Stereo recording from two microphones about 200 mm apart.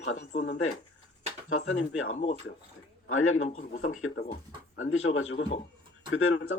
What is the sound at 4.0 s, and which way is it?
Speech, 90° left.